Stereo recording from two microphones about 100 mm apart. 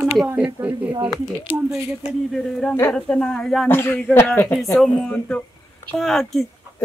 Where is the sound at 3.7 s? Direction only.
25° left (ahead or behind).